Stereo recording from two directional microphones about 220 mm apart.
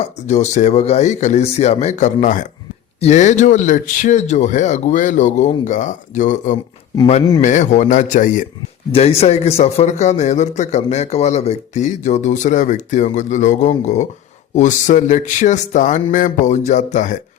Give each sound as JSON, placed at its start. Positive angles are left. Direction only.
{"t": 0.3, "sound": "a man's voice", "side_deg": 35}